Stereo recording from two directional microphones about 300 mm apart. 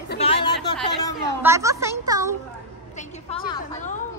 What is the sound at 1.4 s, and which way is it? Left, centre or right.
Speech, centre.